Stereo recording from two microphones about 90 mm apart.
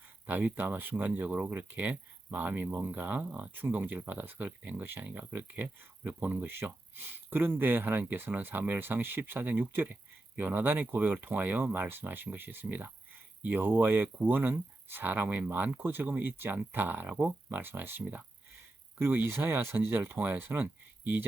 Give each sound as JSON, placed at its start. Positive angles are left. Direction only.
{"t": 0.3, "sound": "speech", "side_deg": -20}